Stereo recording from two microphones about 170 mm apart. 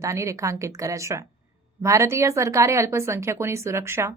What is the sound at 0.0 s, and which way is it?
Speech, 15° right (ahead or behind).